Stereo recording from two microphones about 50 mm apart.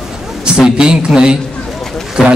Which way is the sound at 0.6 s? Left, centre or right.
Centre.